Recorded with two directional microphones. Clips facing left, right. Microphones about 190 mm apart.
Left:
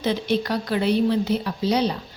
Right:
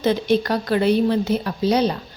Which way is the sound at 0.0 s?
50° right (ahead or behind).